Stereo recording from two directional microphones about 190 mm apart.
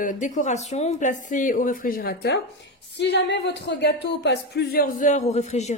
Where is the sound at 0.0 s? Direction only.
40° left (ahead or behind).